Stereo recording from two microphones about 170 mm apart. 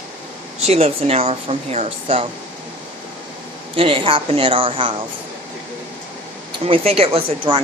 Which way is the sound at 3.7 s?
30° right (ahead or behind).